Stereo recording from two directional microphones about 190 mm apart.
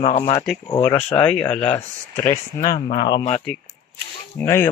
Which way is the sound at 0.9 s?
10° left (ahead or behind).